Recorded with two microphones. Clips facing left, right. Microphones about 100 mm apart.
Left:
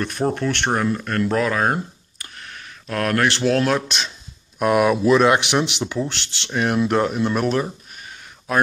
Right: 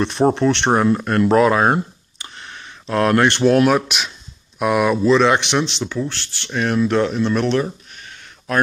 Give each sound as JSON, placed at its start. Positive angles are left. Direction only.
{"t": 0.0, "sound": "speech", "side_deg": -30}
{"t": 2.9, "sound": "speech", "side_deg": -25}